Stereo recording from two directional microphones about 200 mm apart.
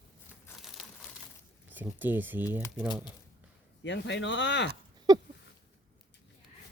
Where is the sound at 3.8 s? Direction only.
60° left (ahead or behind).